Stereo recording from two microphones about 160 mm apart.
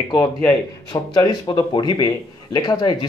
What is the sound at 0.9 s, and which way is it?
Speech, 25° left (ahead or behind).